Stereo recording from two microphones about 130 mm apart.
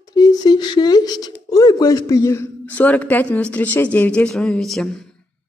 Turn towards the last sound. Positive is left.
turn(degrees=5)  # may be behind; listen again after turning